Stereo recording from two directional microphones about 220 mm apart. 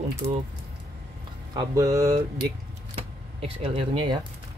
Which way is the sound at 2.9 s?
25° right (ahead or behind).